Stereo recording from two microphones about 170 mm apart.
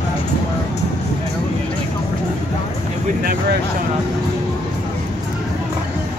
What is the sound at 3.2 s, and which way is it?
Speech, 60° right (ahead or behind).